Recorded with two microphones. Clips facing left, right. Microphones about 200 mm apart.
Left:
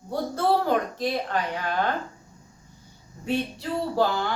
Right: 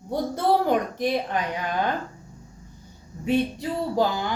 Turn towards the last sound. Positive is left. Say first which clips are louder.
# even
turn(degrees=-15)  # may be behind; listen again after turning